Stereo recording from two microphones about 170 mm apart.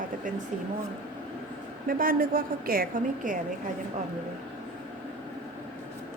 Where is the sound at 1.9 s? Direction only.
55° right (ahead or behind).